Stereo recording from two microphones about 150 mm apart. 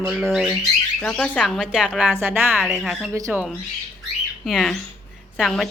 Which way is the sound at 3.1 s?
20° right (ahead or behind).